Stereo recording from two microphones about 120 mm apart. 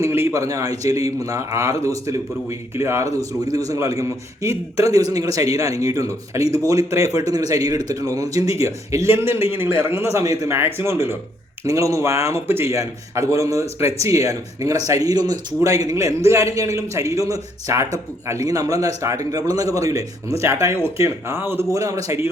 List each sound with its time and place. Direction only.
0.0 s a man's voice: 20° right (ahead or behind)